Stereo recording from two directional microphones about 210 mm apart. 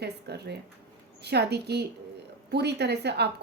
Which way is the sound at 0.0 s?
50° right (ahead or behind).